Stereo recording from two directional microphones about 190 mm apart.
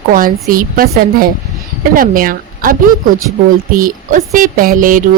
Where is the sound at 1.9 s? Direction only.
50° right (ahead or behind).